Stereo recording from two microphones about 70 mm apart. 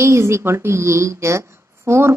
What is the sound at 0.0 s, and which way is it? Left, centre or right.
A woman's voice, right.